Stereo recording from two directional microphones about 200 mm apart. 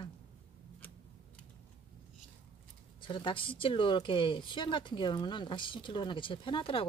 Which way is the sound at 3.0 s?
25° left (ahead or behind).